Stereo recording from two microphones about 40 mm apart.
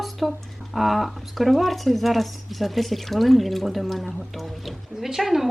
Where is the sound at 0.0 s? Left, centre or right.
Centre.